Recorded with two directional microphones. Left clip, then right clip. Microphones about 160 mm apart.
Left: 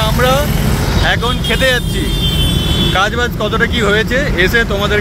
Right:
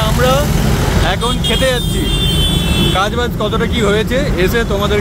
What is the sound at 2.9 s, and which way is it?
Speech, 10° right (ahead or behind).